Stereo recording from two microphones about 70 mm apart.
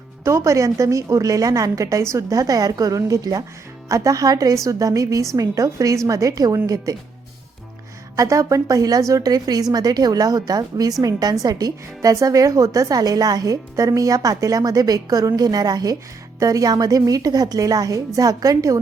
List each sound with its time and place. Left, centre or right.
0.3 s a woman's voice: right
8.1 s a woman's voice: right
12.1 s a woman's voice: right